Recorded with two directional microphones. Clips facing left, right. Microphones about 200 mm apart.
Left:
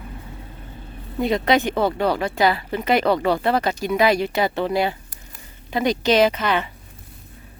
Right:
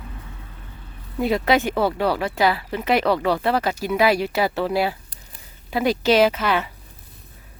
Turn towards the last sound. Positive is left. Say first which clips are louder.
# even
turn(degrees=-5)  # may be behind; listen again after turning